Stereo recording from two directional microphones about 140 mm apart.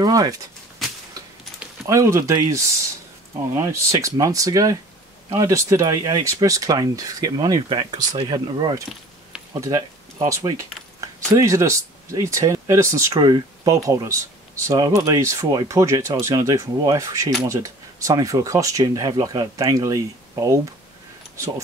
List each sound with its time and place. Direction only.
0.0 s speech: 25° right (ahead or behind)
1.9 s speech: 20° right (ahead or behind)